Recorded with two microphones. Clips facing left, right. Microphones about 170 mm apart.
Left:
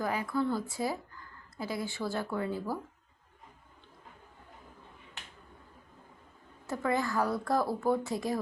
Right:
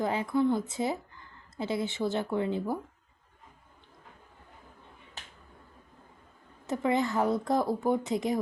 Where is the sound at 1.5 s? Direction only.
25° right (ahead or behind).